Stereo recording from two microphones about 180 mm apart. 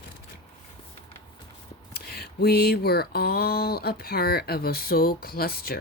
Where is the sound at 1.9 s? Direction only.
60° left (ahead or behind).